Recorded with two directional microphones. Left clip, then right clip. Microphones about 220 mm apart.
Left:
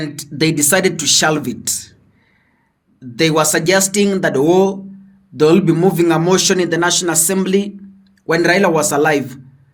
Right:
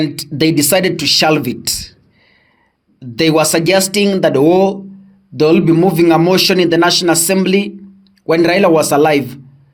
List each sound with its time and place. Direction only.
0.0 s speech: 30° right (ahead or behind)
3.0 s speech: 30° right (ahead or behind)